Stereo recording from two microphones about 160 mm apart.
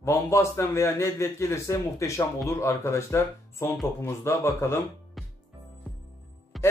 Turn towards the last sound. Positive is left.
turn(degrees=0)  # may be behind; listen again after turning